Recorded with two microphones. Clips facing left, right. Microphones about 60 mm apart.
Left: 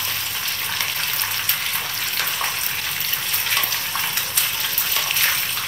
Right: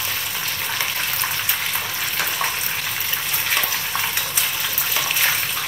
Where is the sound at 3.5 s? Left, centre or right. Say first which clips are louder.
Right 1 dB; centre.